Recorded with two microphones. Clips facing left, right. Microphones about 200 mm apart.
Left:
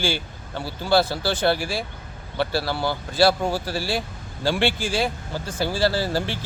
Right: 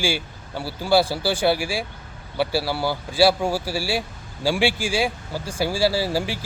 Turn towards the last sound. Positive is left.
turn(degrees=-10)  # may be behind; listen again after turning